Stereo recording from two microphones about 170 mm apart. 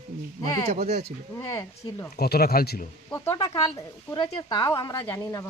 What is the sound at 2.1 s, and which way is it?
Speech, 65° left (ahead or behind).